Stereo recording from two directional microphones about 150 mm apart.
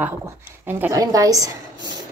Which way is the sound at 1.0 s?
25° right (ahead or behind).